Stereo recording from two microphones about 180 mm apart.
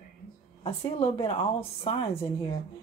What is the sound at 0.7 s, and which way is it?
A woman's voice, 30° left (ahead or behind).